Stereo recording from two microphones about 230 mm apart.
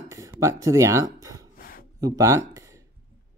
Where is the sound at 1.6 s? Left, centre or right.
Left.